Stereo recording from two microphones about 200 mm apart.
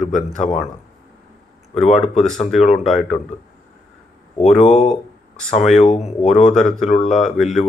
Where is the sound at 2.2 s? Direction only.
Centre (ahead or behind).